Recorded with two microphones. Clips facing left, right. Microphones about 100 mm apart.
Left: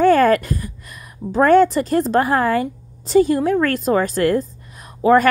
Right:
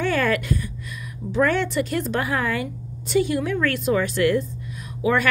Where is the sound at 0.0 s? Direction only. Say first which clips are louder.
Left 9 dB; 40° left (ahead or behind).